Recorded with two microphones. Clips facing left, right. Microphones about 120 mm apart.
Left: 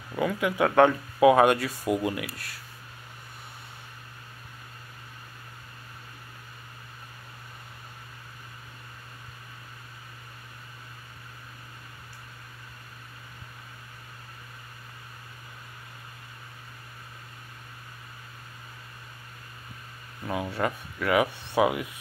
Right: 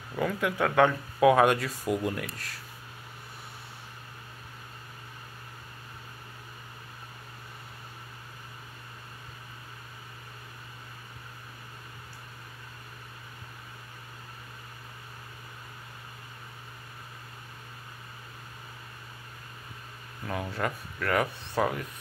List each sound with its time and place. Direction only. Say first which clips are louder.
0.1 s speech: left 2 dB; centre (ahead or behind)
20.2 s speech: left 3 dB; 5° left (ahead or behind)
21.5 s rub: left 5 dB; 10° left (ahead or behind)